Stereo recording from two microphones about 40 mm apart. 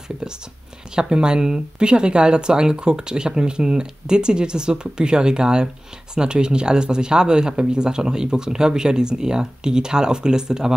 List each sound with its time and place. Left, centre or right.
0.9 s speech: right